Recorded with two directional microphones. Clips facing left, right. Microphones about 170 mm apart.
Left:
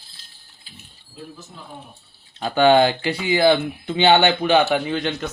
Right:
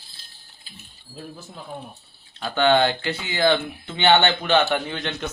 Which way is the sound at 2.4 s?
15° left (ahead or behind).